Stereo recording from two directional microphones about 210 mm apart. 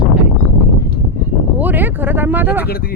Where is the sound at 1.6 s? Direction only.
10° right (ahead or behind).